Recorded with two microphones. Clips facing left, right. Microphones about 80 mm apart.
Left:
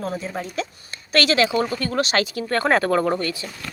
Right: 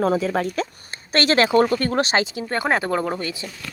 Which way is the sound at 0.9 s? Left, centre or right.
Right.